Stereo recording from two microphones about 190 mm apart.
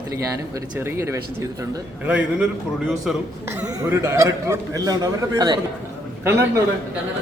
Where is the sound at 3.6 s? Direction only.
15° right (ahead or behind).